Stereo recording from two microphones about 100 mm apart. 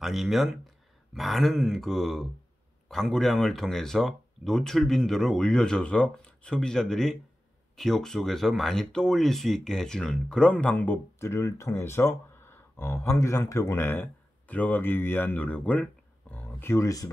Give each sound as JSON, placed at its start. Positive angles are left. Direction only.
{"t": 0.0, "sound": "speech", "side_deg": 0}
{"t": 11.1, "sound": "speech", "side_deg": 30}